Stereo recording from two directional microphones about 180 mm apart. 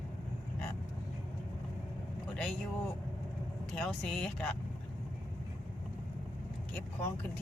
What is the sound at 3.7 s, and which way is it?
Speech, 5° left (ahead or behind).